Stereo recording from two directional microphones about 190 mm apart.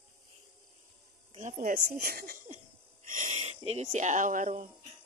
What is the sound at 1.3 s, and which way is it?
Speech, 40° right (ahead or behind).